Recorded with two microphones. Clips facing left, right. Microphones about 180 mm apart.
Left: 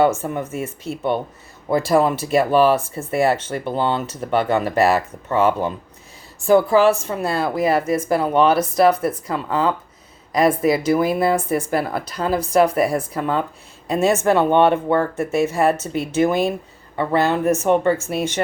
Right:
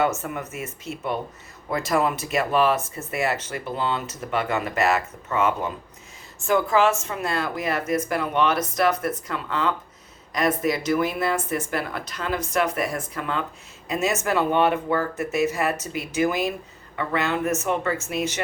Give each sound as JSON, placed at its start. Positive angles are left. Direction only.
{"t": 0.0, "sound": "speech", "side_deg": 30}